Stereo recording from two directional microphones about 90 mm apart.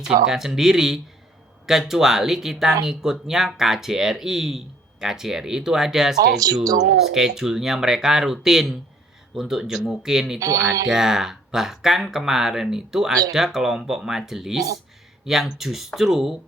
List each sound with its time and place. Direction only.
0.3 s speech: 5° right (ahead or behind)
6.1 s speech: 45° right (ahead or behind)
7.1 s speech: 5° right (ahead or behind)
10.4 s speech: 40° right (ahead or behind)
10.8 s speech: 5° right (ahead or behind)